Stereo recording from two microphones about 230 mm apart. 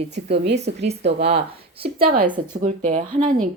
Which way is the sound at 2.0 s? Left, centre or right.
Right.